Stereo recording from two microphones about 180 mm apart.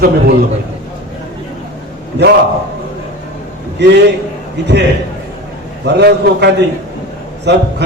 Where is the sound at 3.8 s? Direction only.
75° right (ahead or behind).